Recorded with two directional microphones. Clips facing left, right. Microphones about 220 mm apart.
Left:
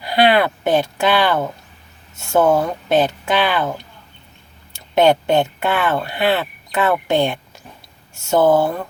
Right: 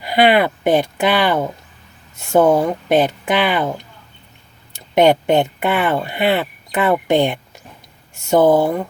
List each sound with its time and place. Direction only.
0.0 s speech: 20° right (ahead or behind)
4.9 s speech: 15° right (ahead or behind)